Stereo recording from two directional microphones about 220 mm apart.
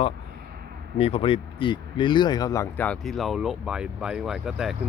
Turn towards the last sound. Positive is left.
turn(degrees=-5)  # may be behind; listen again after turning